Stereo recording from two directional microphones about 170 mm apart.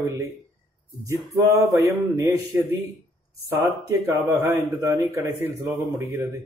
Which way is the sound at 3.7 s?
20° right (ahead or behind).